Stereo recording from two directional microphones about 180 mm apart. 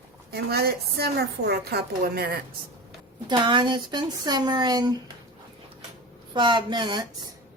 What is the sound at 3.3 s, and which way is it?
Speech, 25° right (ahead or behind).